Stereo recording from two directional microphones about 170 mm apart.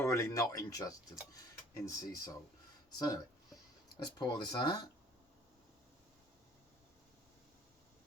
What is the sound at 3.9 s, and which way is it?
Speech, 25° left (ahead or behind).